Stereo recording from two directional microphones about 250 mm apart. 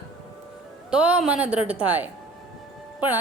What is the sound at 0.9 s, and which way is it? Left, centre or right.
A woman's voice, centre.